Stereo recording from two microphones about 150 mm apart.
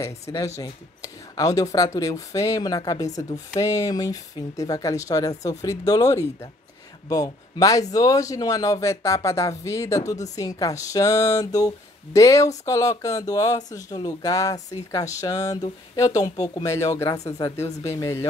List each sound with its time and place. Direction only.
0.0 s speech: 20° left (ahead or behind)
17.9 s speech: 20° left (ahead or behind)